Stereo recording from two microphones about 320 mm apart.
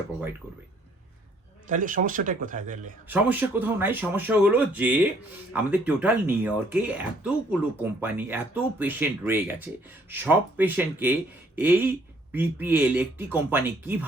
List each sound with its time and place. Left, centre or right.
1.6 s a man's voice: right
3.1 s speech: centre